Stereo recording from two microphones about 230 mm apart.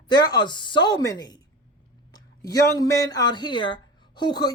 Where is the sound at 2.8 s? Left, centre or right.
Centre.